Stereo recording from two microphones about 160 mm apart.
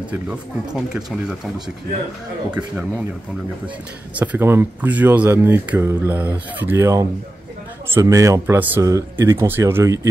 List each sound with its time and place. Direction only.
0.3 s speech: 5° right (ahead or behind)
2.5 s speech: 5° right (ahead or behind)